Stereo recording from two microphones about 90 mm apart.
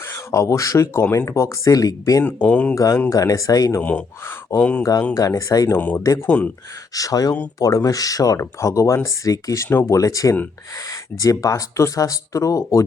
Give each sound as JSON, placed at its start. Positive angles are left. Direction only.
{"t": 0.1, "sound": "speech", "side_deg": 35}
{"t": 2.2, "sound": "speech", "side_deg": 15}
{"t": 2.7, "sound": "speech", "side_deg": 35}
{"t": 3.8, "sound": "speech", "side_deg": 20}
{"t": 4.8, "sound": "speech", "side_deg": 35}
{"t": 5.7, "sound": "speech", "side_deg": 20}
{"t": 6.9, "sound": "speech", "side_deg": 40}